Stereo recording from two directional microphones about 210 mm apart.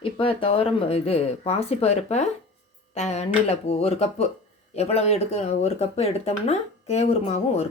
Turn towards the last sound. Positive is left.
turn(degrees=30)  # may be behind; listen again after turning